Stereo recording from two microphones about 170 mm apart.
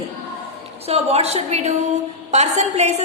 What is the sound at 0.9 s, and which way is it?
A woman's voice, 35° right (ahead or behind).